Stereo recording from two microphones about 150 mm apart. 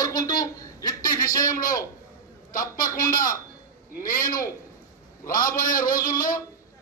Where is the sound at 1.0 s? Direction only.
65° left (ahead or behind).